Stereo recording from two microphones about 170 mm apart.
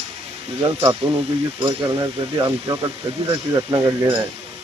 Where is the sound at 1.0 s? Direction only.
35° right (ahead or behind).